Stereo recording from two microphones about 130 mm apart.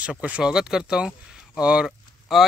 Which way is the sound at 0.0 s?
10° right (ahead or behind).